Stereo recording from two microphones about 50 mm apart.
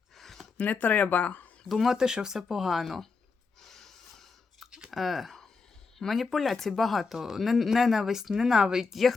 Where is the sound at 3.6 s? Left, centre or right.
Centre.